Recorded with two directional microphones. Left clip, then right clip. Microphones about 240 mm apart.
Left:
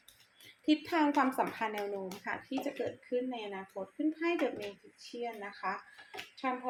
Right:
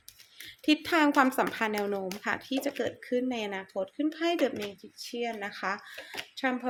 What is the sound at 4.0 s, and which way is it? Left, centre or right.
Speech, right.